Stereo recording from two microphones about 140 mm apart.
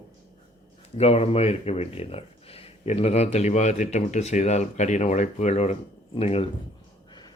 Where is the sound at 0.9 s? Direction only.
45° left (ahead or behind).